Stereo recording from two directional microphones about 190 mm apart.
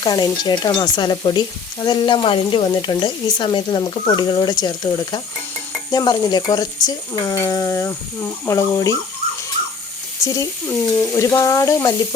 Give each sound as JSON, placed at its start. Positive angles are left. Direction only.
{"t": 0.0, "sound": "stir", "side_deg": 20}
{"t": 5.9, "sound": "speech", "side_deg": 20}
{"t": 10.2, "sound": "speech", "side_deg": 15}